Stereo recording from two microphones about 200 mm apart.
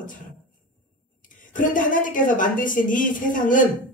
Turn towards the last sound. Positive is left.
turn(degrees=40)  # may be behind; listen again after turning